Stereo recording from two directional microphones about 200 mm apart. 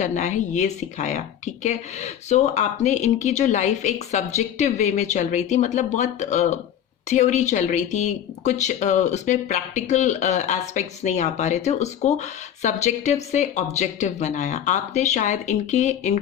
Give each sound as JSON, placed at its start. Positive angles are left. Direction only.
{"t": 0.0, "sound": "speech", "side_deg": 35}